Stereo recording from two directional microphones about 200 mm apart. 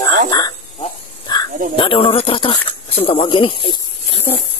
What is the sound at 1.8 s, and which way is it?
Speech, 25° left (ahead or behind).